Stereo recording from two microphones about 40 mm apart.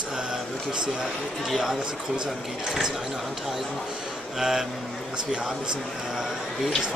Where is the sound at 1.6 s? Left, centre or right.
Centre.